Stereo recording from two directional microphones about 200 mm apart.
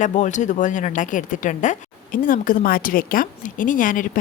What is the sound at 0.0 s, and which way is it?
A woman's voice, 35° left (ahead or behind).